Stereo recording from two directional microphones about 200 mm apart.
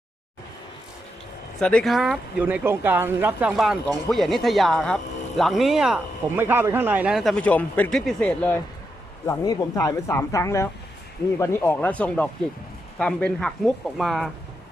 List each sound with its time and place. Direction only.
1.5 s speech: 5° left (ahead or behind)
9.2 s speech: 15° left (ahead or behind); by 14.3 s centre (ahead or behind)